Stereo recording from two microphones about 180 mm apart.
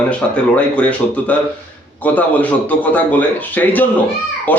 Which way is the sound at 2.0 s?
10° left (ahead or behind).